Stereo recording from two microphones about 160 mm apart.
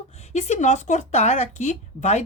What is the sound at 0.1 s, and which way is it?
Speech, 45° left (ahead or behind).